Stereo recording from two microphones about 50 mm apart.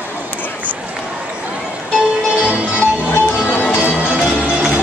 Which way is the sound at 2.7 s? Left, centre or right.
Left.